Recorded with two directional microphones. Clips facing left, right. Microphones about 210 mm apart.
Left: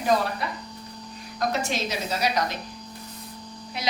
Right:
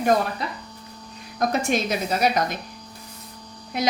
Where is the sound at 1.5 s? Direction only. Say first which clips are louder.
Right 7 dB; 55° right (ahead or behind).